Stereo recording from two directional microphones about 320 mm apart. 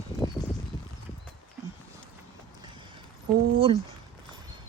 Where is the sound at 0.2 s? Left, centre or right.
Centre.